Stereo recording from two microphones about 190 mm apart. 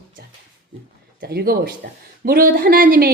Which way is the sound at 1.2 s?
60° right (ahead or behind).